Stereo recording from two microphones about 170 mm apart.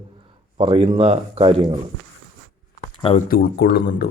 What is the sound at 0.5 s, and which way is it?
Speech, 30° right (ahead or behind).